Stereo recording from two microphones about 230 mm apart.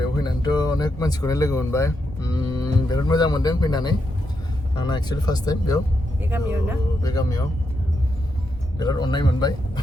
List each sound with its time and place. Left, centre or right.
0.2 s speech: centre
6.3 s speech: centre
7.0 s speech: centre
8.8 s speech: centre